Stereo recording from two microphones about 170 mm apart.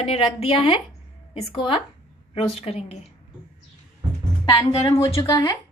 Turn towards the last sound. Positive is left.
turn(degrees=20)  # may be behind; listen again after turning